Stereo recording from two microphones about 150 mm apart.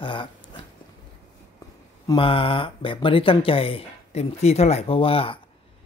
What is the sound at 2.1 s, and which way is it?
Speech, 35° left (ahead or behind).